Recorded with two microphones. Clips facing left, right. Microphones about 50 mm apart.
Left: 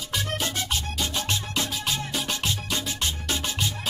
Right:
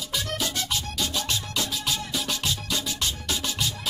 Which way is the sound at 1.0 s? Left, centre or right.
Left.